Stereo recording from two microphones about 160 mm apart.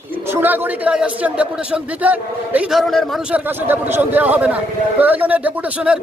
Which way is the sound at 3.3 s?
10° right (ahead or behind).